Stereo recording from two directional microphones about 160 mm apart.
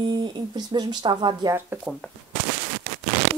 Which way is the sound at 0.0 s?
30° right (ahead or behind).